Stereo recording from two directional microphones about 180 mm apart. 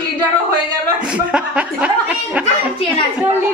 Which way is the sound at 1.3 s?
5° right (ahead or behind).